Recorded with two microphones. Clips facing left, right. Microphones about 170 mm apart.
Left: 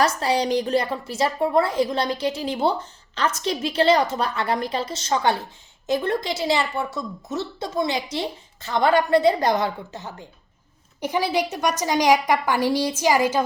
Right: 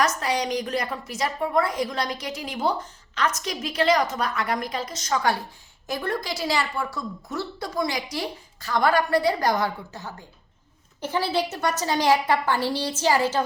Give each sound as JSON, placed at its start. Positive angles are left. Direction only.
{"t": 0.0, "sound": "a woman's voice", "side_deg": 30}